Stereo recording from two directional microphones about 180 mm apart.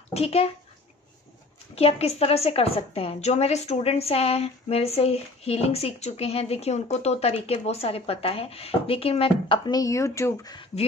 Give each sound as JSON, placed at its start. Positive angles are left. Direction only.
{"t": 0.1, "sound": "a woman's voice", "side_deg": 35}
{"t": 1.8, "sound": "a woman's voice", "side_deg": 35}